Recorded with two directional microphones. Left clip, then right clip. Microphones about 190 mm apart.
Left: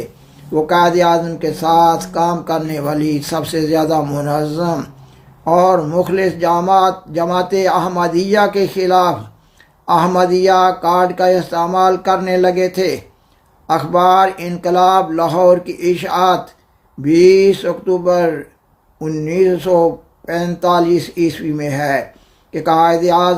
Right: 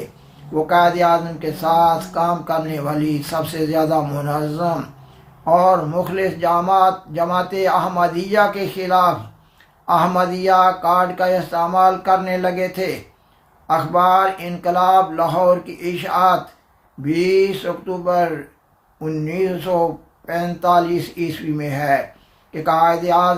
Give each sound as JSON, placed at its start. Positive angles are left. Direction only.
{"t": 0.5, "sound": "speech", "side_deg": 50}